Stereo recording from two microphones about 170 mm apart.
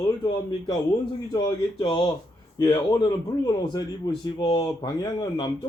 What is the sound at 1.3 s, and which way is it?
A man's voice, 25° left (ahead or behind).